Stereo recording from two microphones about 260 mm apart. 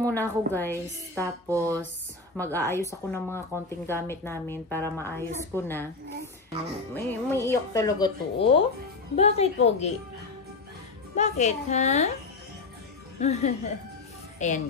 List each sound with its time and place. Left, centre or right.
0.0 s speech: centre
1.5 s speech: centre
2.3 s speech: centre
6.9 s a woman's voice: centre
11.1 s a woman's voice: left
13.2 s a woman's voice: left